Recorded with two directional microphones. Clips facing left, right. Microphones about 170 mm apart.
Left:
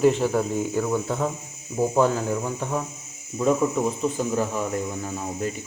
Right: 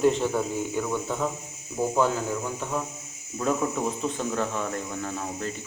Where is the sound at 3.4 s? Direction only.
5° left (ahead or behind).